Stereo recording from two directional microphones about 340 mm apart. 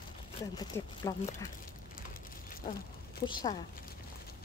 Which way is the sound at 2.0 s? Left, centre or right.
Left.